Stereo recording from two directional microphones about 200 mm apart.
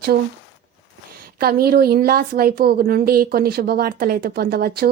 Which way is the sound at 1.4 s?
50° right (ahead or behind).